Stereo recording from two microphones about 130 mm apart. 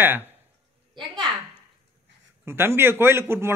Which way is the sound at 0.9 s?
35° right (ahead or behind).